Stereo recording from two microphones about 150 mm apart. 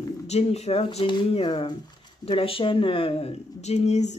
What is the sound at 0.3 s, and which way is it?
Speech, 45° left (ahead or behind).